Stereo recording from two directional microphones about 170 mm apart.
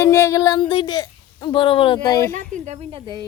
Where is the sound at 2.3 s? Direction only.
50° right (ahead or behind).